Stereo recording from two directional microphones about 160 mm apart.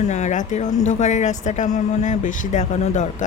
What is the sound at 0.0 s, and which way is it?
Speech, 45° left (ahead or behind).